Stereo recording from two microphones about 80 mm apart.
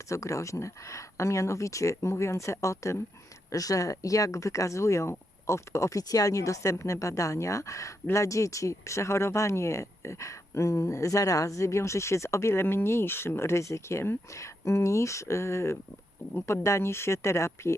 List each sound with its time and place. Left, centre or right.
0.1 s speech: left